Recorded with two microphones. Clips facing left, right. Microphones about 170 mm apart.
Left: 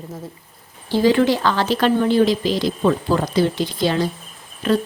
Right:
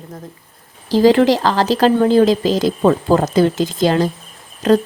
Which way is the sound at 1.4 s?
35° right (ahead or behind).